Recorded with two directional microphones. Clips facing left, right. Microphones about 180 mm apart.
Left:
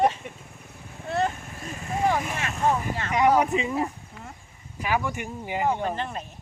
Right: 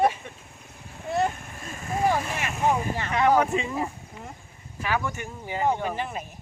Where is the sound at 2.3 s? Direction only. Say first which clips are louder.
Even; 10° right (ahead or behind).